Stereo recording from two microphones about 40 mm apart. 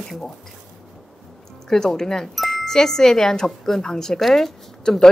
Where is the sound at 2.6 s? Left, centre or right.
Centre.